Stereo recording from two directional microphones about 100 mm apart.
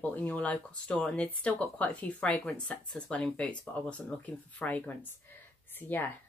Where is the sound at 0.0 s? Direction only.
15° left (ahead or behind).